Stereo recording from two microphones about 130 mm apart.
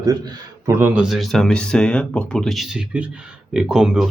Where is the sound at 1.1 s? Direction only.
Centre (ahead or behind).